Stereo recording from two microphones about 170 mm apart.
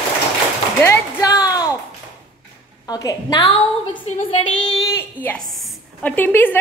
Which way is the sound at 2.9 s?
20° left (ahead or behind).